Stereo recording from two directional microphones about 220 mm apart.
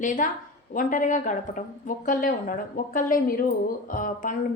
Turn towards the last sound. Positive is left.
turn(degrees=35)  # may be behind; listen again after turning